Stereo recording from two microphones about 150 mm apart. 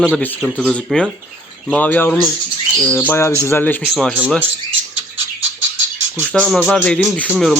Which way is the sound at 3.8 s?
5° right (ahead or behind).